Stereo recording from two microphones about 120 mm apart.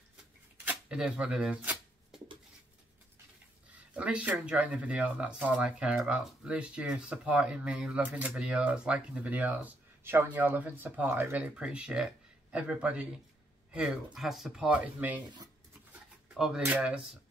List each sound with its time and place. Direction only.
0.7 s speech: 10° right (ahead or behind)
3.9 s speech: 10° right (ahead or behind)
16.3 s speech: 5° right (ahead or behind)